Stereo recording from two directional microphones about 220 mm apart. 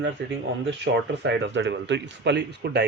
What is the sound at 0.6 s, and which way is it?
Speech, 55° right (ahead or behind).